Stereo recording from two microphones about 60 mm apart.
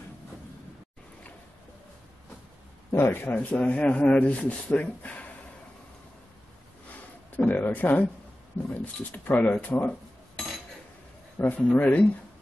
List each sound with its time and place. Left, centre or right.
2.9 s a man's voice: left
7.3 s a man's voice: left
11.3 s a man's voice: left